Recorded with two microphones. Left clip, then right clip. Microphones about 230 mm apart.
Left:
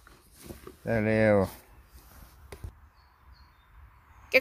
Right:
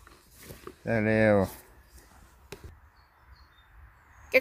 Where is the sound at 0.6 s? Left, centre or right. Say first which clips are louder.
Even; centre.